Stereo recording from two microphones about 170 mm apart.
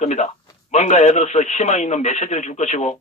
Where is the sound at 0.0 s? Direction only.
45° left (ahead or behind).